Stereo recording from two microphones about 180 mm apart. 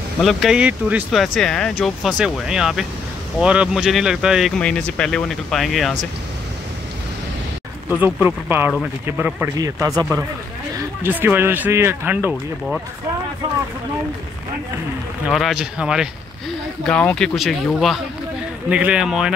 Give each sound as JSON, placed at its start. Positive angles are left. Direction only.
{"t": 0.2, "sound": "speech", "side_deg": 0}
{"t": 8.0, "sound": "speech", "side_deg": -10}
{"t": 15.2, "sound": "speech", "side_deg": 0}